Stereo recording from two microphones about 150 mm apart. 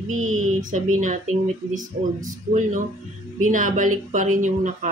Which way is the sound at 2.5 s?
55° right (ahead or behind).